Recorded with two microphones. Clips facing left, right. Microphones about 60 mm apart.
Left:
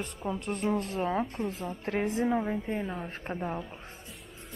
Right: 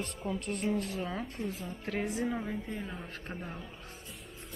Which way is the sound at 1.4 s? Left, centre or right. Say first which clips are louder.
Left 4 dB; left.